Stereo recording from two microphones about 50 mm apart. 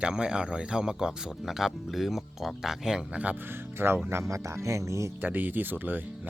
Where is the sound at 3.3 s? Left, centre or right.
Right.